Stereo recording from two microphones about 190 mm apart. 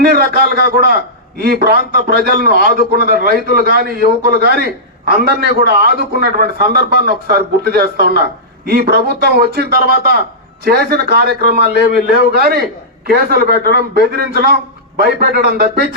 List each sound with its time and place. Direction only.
0.0 s a man's voice: 55° right (ahead or behind)